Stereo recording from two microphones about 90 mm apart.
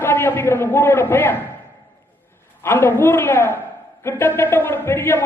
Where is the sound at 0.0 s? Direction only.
25° left (ahead or behind).